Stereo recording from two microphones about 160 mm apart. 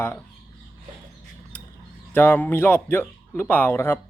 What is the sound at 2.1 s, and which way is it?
Speech, 15° left (ahead or behind).